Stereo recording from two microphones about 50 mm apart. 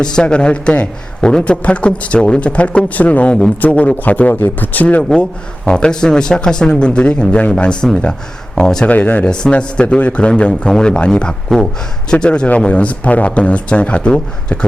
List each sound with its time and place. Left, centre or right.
0.0 s a man's voice: centre
5.6 s a man's voice: centre
8.9 s a man's voice: left